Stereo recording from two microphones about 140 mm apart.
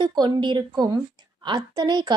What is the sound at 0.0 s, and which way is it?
A woman's voice, 35° right (ahead or behind).